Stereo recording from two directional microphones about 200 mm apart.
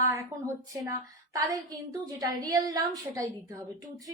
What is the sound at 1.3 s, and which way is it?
A woman's voice, 20° right (ahead or behind).